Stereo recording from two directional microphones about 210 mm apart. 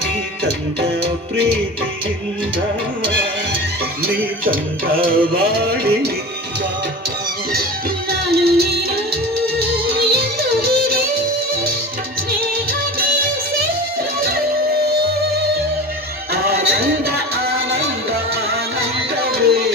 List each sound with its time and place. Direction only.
4.0 s music: 45° right (ahead or behind)
8.1 s music: 50° right (ahead or behind)
14.2 s music: 45° right (ahead or behind)
16.3 s music: 50° right (ahead or behind)